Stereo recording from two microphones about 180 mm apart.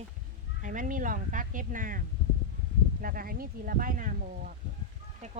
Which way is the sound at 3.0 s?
55° right (ahead or behind).